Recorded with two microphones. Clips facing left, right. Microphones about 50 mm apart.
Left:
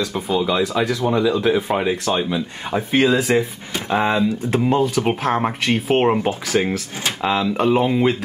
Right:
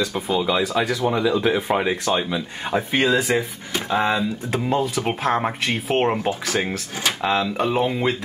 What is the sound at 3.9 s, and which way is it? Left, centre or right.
Speech, centre.